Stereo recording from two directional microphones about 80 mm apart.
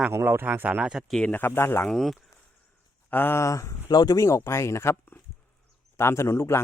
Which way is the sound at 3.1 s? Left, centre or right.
Left.